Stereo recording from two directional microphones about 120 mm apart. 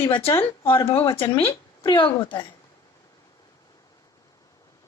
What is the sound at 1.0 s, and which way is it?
Speech, 45° left (ahead or behind).